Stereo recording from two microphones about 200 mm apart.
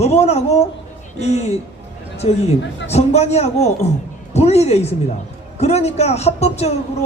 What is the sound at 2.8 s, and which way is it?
A man's voice, 35° left (ahead or behind).